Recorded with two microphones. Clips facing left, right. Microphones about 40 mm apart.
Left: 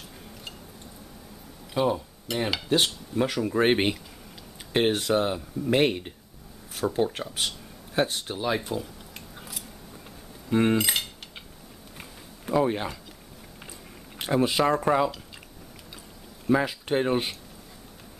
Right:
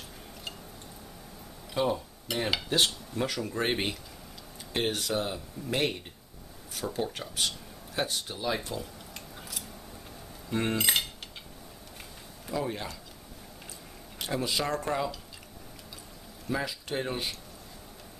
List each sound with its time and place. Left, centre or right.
1.7 s cutlery: centre
3.6 s speech: left
8.5 s cutlery: centre
9.4 s scissors: centre
10.5 s cutlery: centre
10.8 s cutlery: centre
12.0 s a sound: left
14.2 s speech: left
16.4 s speech: left